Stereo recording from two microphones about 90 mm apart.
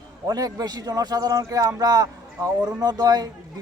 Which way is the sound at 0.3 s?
40° right (ahead or behind).